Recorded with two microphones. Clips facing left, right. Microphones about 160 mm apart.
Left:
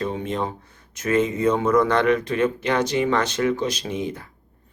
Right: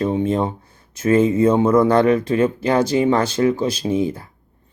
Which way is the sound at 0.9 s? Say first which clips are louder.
Right 6 dB; 30° right (ahead or behind).